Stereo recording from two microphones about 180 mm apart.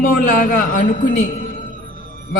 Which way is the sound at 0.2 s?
50° left (ahead or behind).